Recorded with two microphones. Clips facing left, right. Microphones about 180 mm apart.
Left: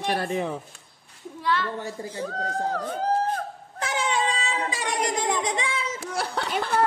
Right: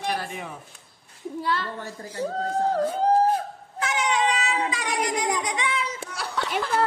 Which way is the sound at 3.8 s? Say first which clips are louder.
Right 2 dB; 30° left (ahead or behind).